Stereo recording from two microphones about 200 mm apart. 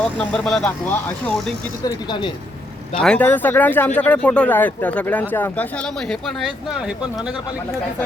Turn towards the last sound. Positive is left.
turn(degrees=0)  # may be behind; listen again after turning